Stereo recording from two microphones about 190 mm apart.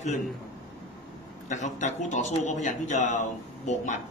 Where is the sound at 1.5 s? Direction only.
40° left (ahead or behind).